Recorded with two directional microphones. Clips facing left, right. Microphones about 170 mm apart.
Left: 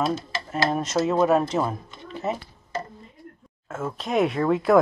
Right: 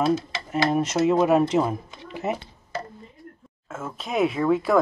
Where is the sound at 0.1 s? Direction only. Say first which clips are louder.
Right 4 dB; 10° right (ahead or behind).